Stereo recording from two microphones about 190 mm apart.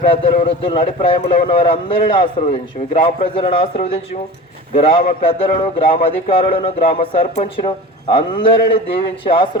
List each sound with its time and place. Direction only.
0.0 s a man's voice: 30° left (ahead or behind)
4.7 s a man's voice: 30° left (ahead or behind)